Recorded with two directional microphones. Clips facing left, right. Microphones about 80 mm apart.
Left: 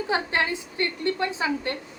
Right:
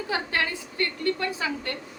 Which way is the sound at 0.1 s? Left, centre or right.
Left.